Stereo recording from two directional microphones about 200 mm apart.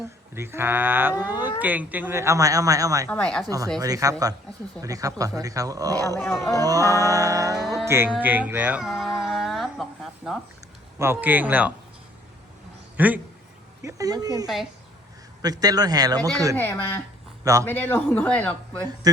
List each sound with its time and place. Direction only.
0.3 s speech: 10° right (ahead or behind)
3.1 s speech: 5° left (ahead or behind)
3.4 s speech: 15° right (ahead or behind)
6.1 s speech: 10° left (ahead or behind)
6.6 s speech: 15° right (ahead or behind)
7.9 s a sound: 10° right (ahead or behind)
10.9 s speech: 10° right (ahead or behind)
13.0 s a man's voice: 10° right (ahead or behind)
14.4 s speech: centre (ahead or behind)
15.4 s a man's voice: 20° right (ahead or behind)
16.6 s speech: 10° left (ahead or behind)
17.4 s a man's voice: 15° right (ahead or behind)
17.7 s speech: 10° left (ahead or behind)
19.1 s a man's voice: 20° right (ahead or behind)